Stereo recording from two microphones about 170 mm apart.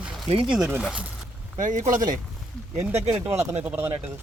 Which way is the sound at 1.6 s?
50° right (ahead or behind).